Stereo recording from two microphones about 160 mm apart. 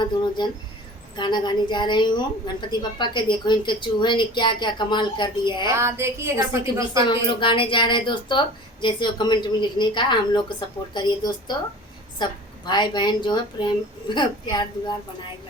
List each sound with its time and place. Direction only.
0.4 s a woman's voice: 30° left (ahead or behind)
5.7 s a woman's voice: 15° right (ahead or behind)
7.0 s a woman's voice: 30° left (ahead or behind)